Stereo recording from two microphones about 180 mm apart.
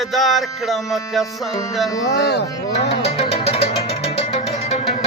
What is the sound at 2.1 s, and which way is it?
Music, 65° left (ahead or behind).